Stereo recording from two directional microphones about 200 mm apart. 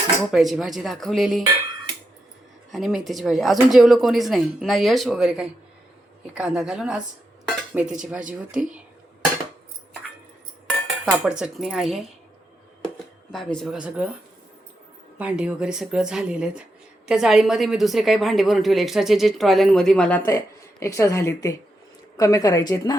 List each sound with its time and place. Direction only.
0.3 s a woman's voice: centre (ahead or behind)
2.7 s a woman's voice: centre (ahead or behind)
7.7 s cutlery: 5° right (ahead or behind)
8.3 s a woman's voice: 5° right (ahead or behind)
10.8 s speech: 5° right (ahead or behind)
13.3 s a woman's voice: centre (ahead or behind)
15.2 s a woman's voice: 5° right (ahead or behind)
20.2 s a woman's voice: 15° left (ahead or behind)